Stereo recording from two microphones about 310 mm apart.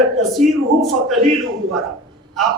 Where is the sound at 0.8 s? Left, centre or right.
Centre.